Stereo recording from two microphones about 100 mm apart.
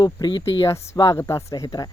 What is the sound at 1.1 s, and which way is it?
Speech, 30° left (ahead or behind).